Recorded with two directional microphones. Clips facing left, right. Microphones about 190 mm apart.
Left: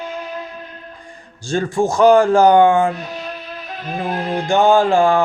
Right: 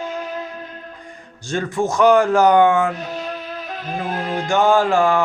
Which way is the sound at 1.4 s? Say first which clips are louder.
Left 3 dB; 30° left (ahead or behind).